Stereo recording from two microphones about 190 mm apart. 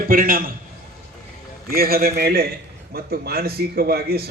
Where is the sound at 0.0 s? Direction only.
50° right (ahead or behind).